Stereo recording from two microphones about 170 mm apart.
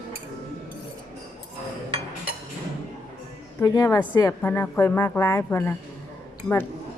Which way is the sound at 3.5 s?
20° left (ahead or behind).